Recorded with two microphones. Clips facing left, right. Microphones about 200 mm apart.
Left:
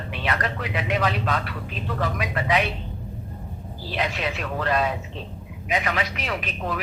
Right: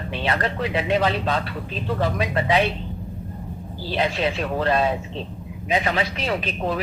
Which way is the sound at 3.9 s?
30° right (ahead or behind).